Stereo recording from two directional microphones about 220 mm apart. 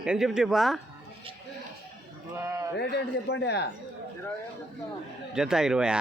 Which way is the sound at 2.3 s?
15° right (ahead or behind).